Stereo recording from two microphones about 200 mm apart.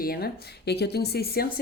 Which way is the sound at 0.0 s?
50° left (ahead or behind).